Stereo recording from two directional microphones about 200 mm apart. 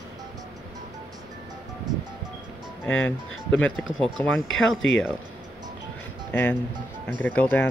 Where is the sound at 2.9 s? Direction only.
80° left.